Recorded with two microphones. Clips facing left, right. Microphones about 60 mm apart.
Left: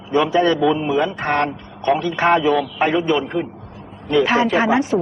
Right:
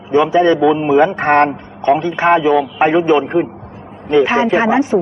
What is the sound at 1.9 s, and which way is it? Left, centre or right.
Speech, right.